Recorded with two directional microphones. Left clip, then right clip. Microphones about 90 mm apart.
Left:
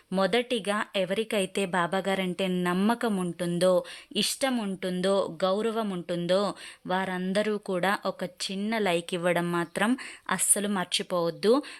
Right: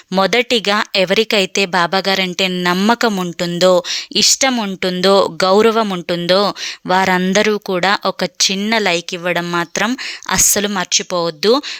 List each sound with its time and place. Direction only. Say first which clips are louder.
0.2 s speech: right 12 dB; 50° right (ahead or behind)
0.6 s a woman's voice: right 14 dB; 40° right (ahead or behind); by 5.7 s 65° right (ahead or behind)
5.7 s a woman's voice: right 14 dB; 45° right (ahead or behind)
6.8 s speech: right 16 dB; 55° right (ahead or behind)
7.4 s a woman's voice: right 13 dB; 35° right (ahead or behind)
9.2 s speech: right 7 dB; 15° right (ahead or behind)
9.5 s speech: right 10 dB; 25° right (ahead or behind)
10.2 s a woman's voice: right 14 dB; 40° right (ahead or behind)
10.8 s speech: right 11 dB; 25° right (ahead or behind)